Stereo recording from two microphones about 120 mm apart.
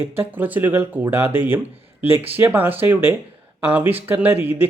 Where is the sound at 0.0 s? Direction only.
20° right (ahead or behind).